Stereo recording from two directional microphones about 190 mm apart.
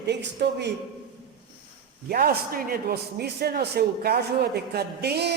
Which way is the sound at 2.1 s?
50° right (ahead or behind).